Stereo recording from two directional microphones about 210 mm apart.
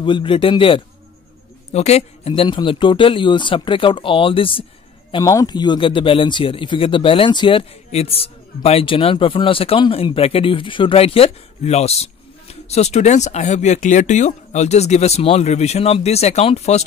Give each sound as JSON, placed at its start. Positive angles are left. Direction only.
{"t": 0.0, "sound": "speech", "side_deg": 25}